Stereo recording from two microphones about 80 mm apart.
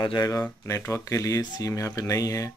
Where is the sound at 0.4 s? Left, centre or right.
Left.